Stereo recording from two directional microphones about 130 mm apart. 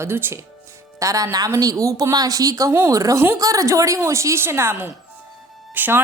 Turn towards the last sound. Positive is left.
turn(degrees=-15)  # may be behind; listen again after turning